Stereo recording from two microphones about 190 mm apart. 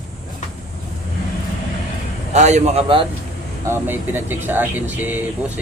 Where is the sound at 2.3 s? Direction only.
35° right (ahead or behind).